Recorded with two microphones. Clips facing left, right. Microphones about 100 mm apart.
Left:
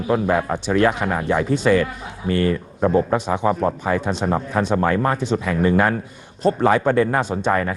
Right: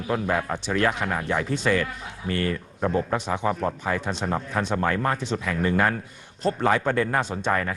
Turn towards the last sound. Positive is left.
turn(degrees=10)  # may be behind; listen again after turning